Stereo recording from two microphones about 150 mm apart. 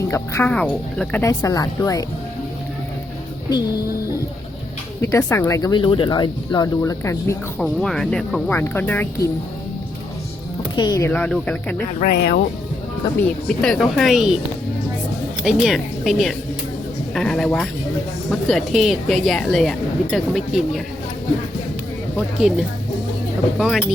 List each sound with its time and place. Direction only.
0.1 s speech: 20° left (ahead or behind)
0.5 s speech: 5° left (ahead or behind)
1.2 s speech: 25° left (ahead or behind)
4.9 s speech: 15° left (ahead or behind)
7.6 s speech: 5° left (ahead or behind)
10.8 s speech: 25° left (ahead or behind)
11.1 s speech: 10° left (ahead or behind)
11.9 s speech: 70° left (ahead or behind)
13.2 s speech: 5° left (ahead or behind)
15.4 s a woman's voice: 5° right (ahead or behind)
22.4 s speech: 5° right (ahead or behind)